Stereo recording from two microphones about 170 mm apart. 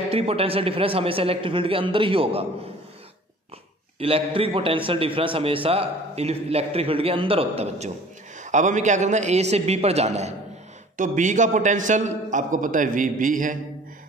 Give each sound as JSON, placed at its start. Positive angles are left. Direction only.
{"t": 0.1, "sound": "a man's voice", "side_deg": -35}
{"t": 4.0, "sound": "a man's voice", "side_deg": -35}